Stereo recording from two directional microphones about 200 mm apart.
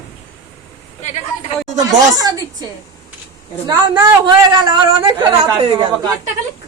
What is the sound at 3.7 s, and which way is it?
A man's voice, 20° right (ahead or behind).